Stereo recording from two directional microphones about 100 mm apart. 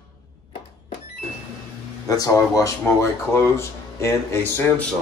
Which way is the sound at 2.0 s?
35° left (ahead or behind).